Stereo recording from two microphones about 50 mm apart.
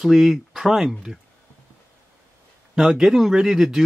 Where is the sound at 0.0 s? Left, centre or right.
Centre.